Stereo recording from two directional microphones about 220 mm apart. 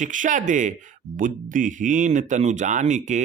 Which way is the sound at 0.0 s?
35° right (ahead or behind).